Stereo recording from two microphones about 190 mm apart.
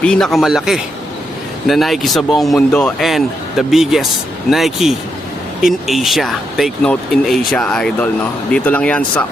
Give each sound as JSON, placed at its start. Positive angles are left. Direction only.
{"t": 0.0, "sound": "speech", "side_deg": 5}